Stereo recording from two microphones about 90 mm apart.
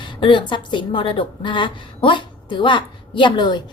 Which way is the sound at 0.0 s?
65° left (ahead or behind).